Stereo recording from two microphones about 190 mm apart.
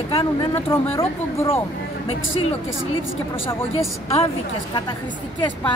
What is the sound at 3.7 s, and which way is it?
Speech, 30° left (ahead or behind).